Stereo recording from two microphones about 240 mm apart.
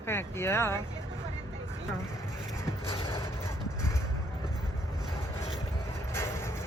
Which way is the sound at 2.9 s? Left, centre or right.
Centre.